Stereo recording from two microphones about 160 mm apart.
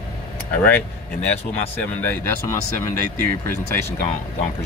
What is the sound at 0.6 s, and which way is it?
Speech, 10° left (ahead or behind).